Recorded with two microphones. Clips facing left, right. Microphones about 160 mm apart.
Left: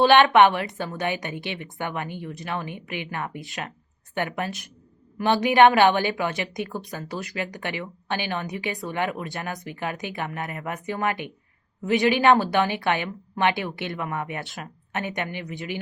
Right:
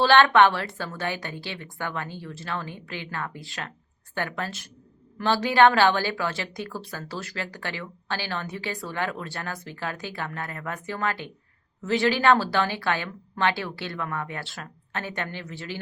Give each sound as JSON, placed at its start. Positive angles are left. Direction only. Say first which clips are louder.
{"t": 0.0, "sound": "speech", "louder": "left 2 dB", "side_deg": 15}